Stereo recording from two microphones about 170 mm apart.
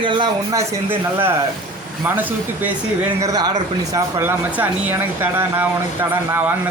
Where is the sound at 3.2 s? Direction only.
25° right (ahead or behind).